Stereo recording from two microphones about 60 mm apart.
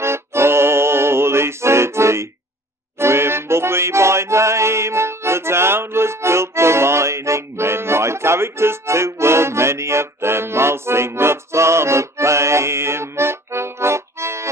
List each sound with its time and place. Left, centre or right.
0.0 s music: right